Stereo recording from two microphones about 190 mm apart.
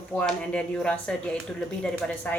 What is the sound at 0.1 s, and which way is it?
Speech, 5° left (ahead or behind).